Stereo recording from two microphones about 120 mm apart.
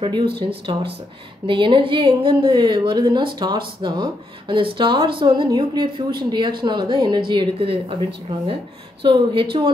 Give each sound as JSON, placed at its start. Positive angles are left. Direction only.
{"t": 0.0, "sound": "a woman's voice", "side_deg": -45}
{"t": 9.0, "sound": "speech", "side_deg": -45}